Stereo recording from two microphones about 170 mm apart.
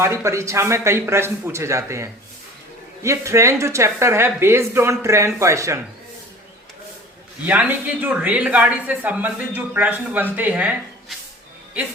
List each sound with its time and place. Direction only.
0.0 s speech: 15° right (ahead or behind)
7.4 s speech: 10° right (ahead or behind)